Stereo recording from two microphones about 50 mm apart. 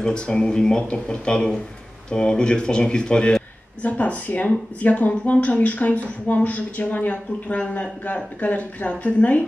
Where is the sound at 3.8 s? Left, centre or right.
Left.